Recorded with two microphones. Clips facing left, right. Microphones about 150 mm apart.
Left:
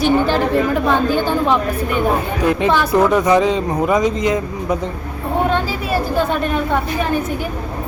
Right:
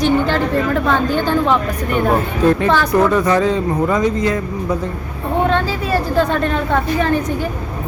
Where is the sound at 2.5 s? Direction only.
15° left (ahead or behind).